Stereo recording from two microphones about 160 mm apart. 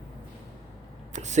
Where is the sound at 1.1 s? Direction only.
45° right (ahead or behind).